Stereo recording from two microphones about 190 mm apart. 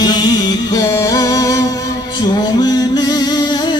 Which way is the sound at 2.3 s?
20° left (ahead or behind).